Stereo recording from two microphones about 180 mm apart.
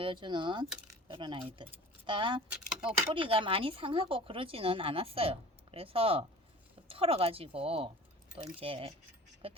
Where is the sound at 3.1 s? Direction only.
30° right (ahead or behind).